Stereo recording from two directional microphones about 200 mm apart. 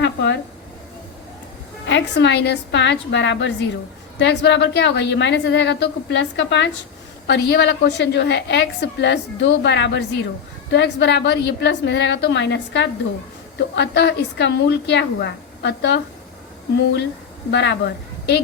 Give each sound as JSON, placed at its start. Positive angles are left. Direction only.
{"t": 0.0, "sound": "a sound", "side_deg": 60}
{"t": 1.9, "sound": "a woman's voice", "side_deg": 60}
{"t": 17.5, "sound": "a woman's voice", "side_deg": 65}